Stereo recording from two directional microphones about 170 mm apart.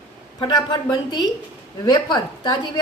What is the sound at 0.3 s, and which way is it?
A woman's voice, 25° left (ahead or behind).